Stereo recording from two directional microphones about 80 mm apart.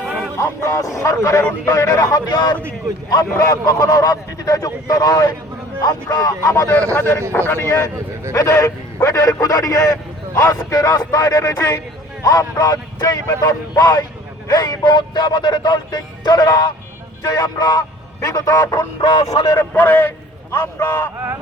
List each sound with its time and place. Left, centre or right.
0.3 s a man's voice: left
3.1 s a man's voice: left
6.9 s speech: left
8.4 s a man's voice: left
19.5 s a man's voice: left